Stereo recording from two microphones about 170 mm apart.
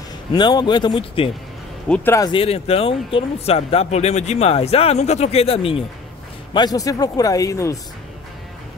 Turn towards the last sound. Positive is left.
turn(degrees=20)  # may be behind; listen again after turning